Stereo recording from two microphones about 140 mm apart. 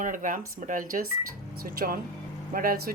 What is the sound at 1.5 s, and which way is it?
Speech, 90° right.